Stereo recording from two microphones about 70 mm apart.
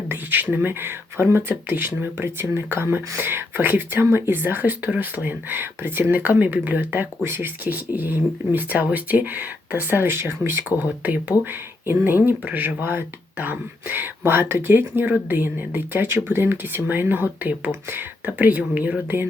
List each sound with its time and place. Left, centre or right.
0.1 s speech: right